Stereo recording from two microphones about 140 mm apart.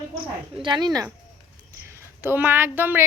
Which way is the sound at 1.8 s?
15° right (ahead or behind).